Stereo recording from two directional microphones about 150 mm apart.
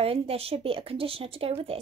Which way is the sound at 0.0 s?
40° right (ahead or behind).